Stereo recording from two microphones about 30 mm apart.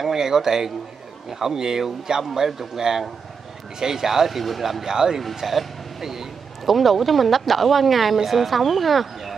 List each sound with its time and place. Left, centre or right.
0.0 s a man's voice: centre
4.8 s speech: centre
5.6 s a sound: centre
6.7 s speech: centre